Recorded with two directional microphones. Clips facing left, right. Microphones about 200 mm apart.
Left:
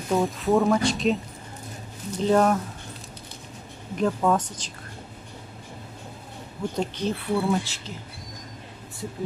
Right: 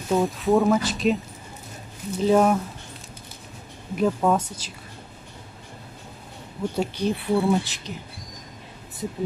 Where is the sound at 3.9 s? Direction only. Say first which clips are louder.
Right 1 dB; 10° right (ahead or behind).